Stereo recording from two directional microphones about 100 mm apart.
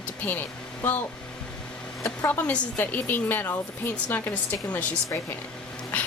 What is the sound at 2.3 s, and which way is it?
A woman's voice, 15° left (ahead or behind).